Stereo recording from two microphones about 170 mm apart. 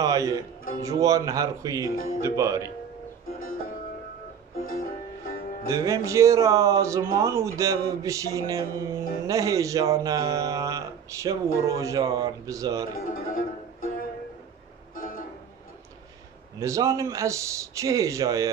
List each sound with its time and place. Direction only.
0.0 s speech: 20° right (ahead or behind)
1.9 s speech: 55° left (ahead or behind)
2.2 s speech: 20° right (ahead or behind)
4.6 s music: 60° left (ahead or behind)
5.7 s speech: 15° right (ahead or behind)
12.9 s music: 55° left (ahead or behind)
16.5 s speech: 20° right (ahead or behind)